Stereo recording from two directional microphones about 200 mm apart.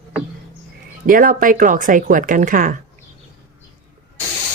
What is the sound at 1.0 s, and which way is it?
Speech, 40° right (ahead or behind).